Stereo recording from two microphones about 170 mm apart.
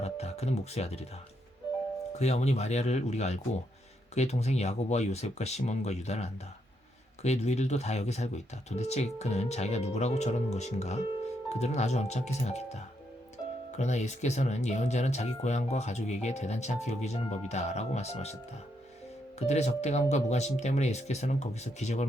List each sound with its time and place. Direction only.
0.0 s speech: 40° left (ahead or behind)
2.1 s speech: 40° left (ahead or behind)
19.4 s speech: 40° left (ahead or behind)